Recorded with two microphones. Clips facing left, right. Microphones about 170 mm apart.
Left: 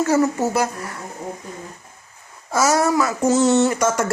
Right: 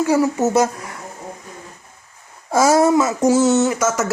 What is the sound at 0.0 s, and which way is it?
Speech, 15° right (ahead or behind).